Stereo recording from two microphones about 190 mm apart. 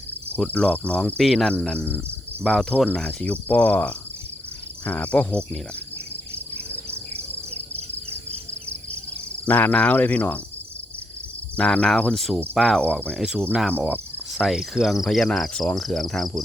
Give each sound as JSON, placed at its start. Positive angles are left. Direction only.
{"t": 0.3, "sound": "cricket", "side_deg": 5}
{"t": 6.3, "sound": "cricket", "side_deg": -30}
{"t": 9.5, "sound": "cricket", "side_deg": 10}
{"t": 11.5, "sound": "cricket", "side_deg": 5}